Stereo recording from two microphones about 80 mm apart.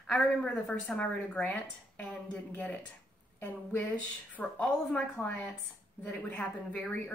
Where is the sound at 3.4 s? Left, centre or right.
Left.